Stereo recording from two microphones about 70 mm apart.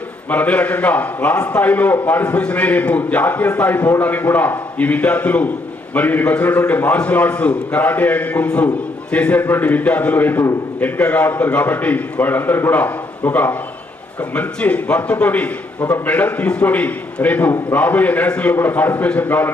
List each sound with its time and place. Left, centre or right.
0.3 s a man's voice: left